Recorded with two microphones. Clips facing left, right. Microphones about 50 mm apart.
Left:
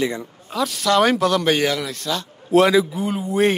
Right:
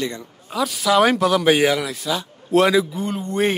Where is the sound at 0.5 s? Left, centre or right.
Centre.